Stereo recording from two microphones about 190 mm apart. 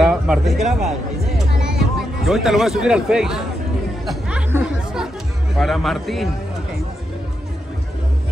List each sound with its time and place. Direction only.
0.0 s a sound: 5° right (ahead or behind)
1.6 s speech: centre (ahead or behind)
4.0 s chatter: 5° right (ahead or behind)